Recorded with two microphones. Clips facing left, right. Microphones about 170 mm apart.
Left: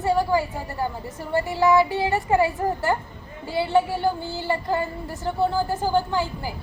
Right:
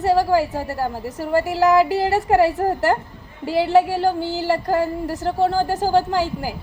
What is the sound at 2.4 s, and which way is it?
Child singing, 80° right.